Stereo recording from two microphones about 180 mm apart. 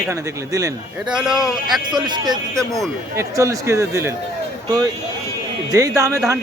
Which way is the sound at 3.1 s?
15° right (ahead or behind).